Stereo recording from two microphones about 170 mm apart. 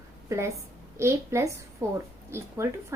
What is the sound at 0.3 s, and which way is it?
A woman's voice, 15° right (ahead or behind).